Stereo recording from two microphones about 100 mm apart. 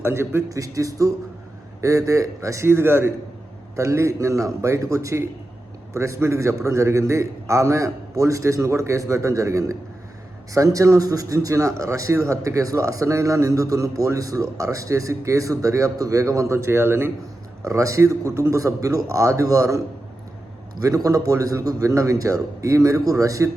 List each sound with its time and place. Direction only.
0.0 s speech: 25° right (ahead or behind)
20.8 s speech: 35° right (ahead or behind)